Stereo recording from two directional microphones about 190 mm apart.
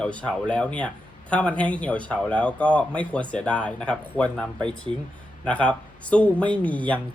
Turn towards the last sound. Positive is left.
turn(degrees=10)  # may be behind; listen again after turning